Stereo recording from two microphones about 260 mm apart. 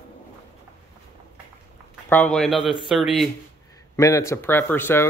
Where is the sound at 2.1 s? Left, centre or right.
Centre.